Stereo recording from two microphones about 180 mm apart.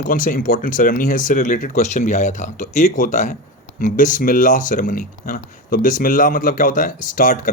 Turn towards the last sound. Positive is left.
turn(degrees=50)  # may be behind; listen again after turning